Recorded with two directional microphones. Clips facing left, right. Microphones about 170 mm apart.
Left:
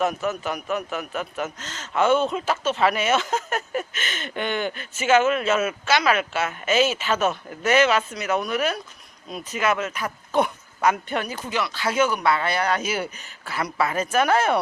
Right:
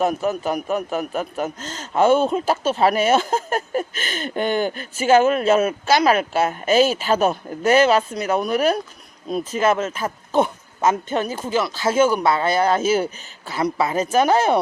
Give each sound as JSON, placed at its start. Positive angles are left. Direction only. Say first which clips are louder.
{"t": 0.0, "sound": "a man's voice", "louder": "right 4 dB", "side_deg": -35}
{"t": 11.5, "sound": "a man's voice", "louder": "right 5 dB", "side_deg": -40}